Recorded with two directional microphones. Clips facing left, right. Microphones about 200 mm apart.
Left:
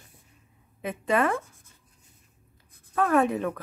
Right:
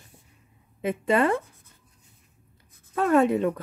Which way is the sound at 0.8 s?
25° right (ahead or behind).